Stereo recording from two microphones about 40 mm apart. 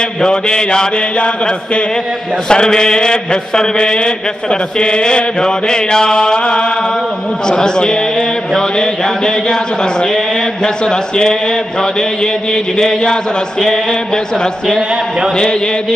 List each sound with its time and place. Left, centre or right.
0.2 s a man's voice: centre
7.4 s mantra: centre